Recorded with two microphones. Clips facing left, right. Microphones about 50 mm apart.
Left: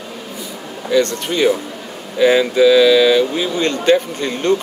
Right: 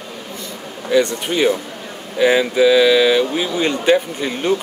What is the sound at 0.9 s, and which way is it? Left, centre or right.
Speech, centre.